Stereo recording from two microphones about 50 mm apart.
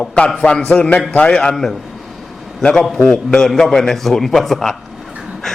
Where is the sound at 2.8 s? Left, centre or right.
Centre.